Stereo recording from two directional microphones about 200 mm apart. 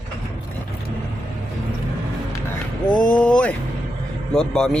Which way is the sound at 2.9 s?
5° left (ahead or behind).